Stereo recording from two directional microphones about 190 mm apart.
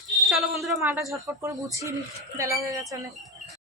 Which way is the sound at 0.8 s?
15° right (ahead or behind).